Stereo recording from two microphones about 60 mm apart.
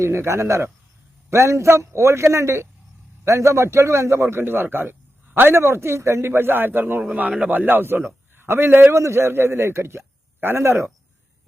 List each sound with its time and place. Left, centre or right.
0.0 s a man's voice: right
7.2 s a man's voice: centre
7.5 s a man's voice: right
8.9 s a man's voice: right